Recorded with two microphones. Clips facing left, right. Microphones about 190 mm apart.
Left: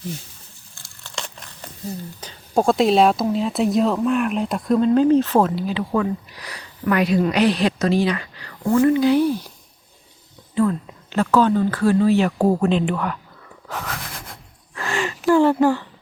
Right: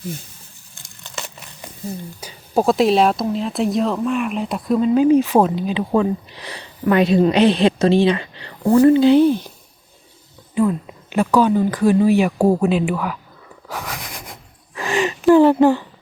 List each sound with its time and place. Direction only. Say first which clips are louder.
0.8 s crumpling: right 2 dB; 20° right (ahead or behind)
1.1 s a sound: right 1 dB; 5° right (ahead or behind)
2.2 s speech: right 1 dB; 5° right (ahead or behind); by 9.5 s 25° right (ahead or behind)
10.5 s speech: right 1 dB; 15° right (ahead or behind)
13.7 s wheeze: right 1 dB; 10° right (ahead or behind)
14.8 s gasp: right 5 dB; 15° right (ahead or behind)
15.3 s speech: right 4 dB; 20° right (ahead or behind)